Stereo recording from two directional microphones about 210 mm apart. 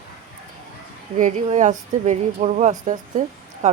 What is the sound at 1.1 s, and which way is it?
A woman's voice, 35° right (ahead or behind).